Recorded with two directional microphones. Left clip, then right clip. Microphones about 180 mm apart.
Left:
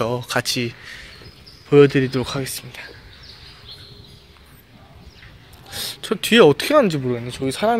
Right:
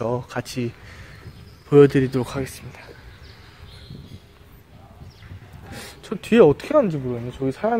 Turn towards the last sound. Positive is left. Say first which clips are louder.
# left 3 dB
turn(degrees=15)  # may be behind; listen again after turning